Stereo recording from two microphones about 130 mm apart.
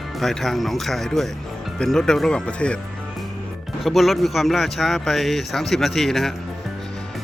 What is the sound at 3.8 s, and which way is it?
A man's voice, centre (ahead or behind).